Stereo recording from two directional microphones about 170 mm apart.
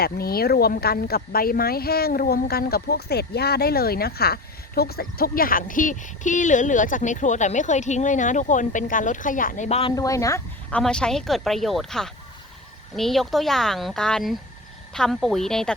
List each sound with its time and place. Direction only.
0.0 s speech: 65° left (ahead or behind)
9.6 s speech: 35° left (ahead or behind)
9.9 s speech: 20° left (ahead or behind)
10.7 s speech: 5° left (ahead or behind)